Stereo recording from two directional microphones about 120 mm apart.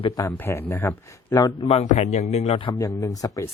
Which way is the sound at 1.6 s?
75° left (ahead or behind).